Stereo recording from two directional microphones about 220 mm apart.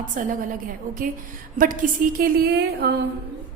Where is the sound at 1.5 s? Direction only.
40° right (ahead or behind).